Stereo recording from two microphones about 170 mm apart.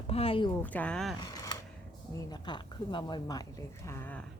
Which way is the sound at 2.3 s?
25° left (ahead or behind).